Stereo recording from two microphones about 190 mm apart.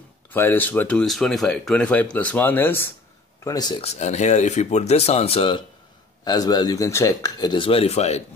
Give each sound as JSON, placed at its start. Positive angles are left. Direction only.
{"t": 0.3, "sound": "speech", "side_deg": 10}
{"t": 3.4, "sound": "speech", "side_deg": 20}
{"t": 3.8, "sound": "speech", "side_deg": 35}